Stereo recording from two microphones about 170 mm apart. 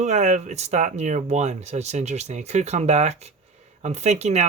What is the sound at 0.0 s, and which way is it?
Speech, 40° right (ahead or behind).